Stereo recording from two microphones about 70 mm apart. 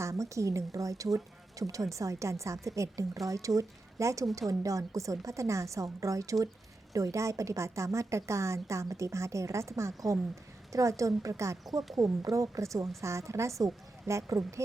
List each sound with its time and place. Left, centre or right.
0.0 s speech: right